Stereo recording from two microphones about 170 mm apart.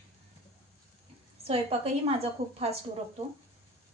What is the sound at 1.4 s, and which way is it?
A woman's voice, 35° right (ahead or behind).